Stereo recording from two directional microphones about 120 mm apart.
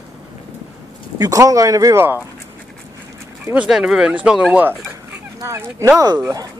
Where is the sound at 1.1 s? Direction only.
30° right (ahead or behind).